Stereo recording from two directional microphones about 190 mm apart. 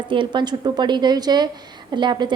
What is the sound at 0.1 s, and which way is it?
A woman's voice, 25° right (ahead or behind).